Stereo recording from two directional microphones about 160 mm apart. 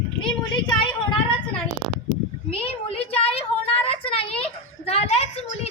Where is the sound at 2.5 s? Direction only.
40° left (ahead or behind).